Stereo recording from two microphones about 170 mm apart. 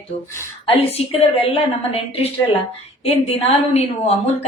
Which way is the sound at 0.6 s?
35° left (ahead or behind).